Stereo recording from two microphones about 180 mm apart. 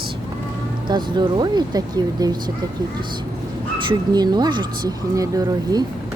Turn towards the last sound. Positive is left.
turn(degrees=-20)  # may be behind; listen again after turning